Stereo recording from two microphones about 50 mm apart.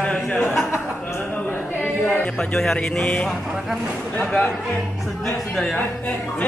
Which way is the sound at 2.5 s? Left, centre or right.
Centre.